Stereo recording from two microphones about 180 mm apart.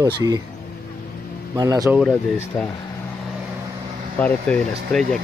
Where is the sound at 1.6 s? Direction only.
20° right (ahead or behind).